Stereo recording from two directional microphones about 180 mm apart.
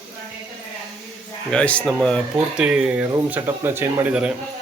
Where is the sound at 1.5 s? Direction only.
5° left (ahead or behind).